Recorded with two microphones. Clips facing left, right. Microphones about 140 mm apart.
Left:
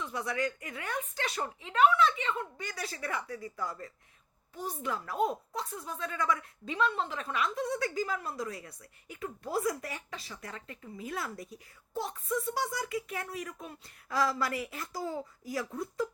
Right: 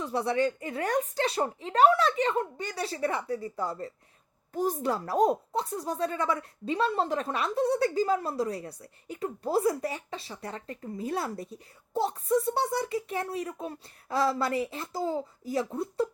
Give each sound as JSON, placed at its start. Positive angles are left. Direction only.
{"t": 0.0, "sound": "speech", "side_deg": -30}
{"t": 4.5, "sound": "speech", "side_deg": -45}